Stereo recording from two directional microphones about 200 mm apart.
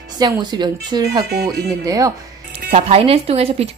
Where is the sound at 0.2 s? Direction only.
20° right (ahead or behind).